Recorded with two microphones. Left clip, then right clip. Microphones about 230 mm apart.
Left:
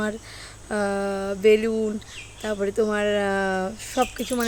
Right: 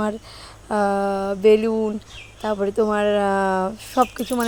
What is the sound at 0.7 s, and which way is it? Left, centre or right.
A woman's voice, centre.